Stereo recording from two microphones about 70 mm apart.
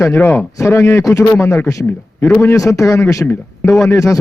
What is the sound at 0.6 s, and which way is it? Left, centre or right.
A man's voice, left.